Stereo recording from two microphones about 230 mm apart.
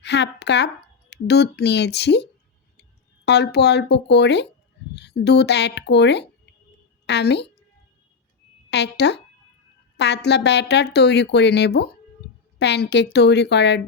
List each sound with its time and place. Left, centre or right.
0.0 s a woman's voice: left
8.7 s a woman's voice: left